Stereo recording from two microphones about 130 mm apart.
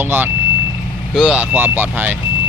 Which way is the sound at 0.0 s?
15° right (ahead or behind).